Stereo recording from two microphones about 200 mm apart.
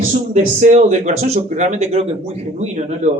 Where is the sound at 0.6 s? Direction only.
35° right (ahead or behind).